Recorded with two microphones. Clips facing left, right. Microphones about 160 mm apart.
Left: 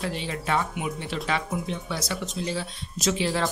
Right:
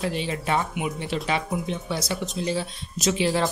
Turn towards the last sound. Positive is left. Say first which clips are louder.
# right 3 dB
turn(degrees=-15)  # may be behind; listen again after turning